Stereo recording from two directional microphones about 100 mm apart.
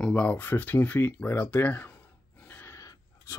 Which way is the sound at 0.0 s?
15° left (ahead or behind).